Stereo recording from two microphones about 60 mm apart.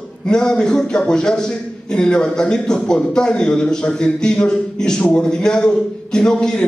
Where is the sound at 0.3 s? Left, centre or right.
Centre.